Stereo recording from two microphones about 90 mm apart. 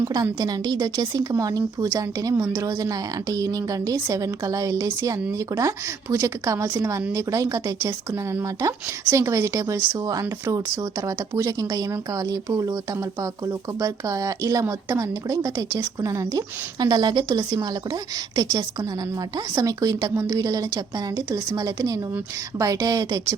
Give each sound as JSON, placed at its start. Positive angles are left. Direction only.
{"t": 0.0, "sound": "a woman's voice", "side_deg": -45}
{"t": 13.8, "sound": "a woman's voice", "side_deg": -40}
{"t": 16.8, "sound": "a woman's voice", "side_deg": -50}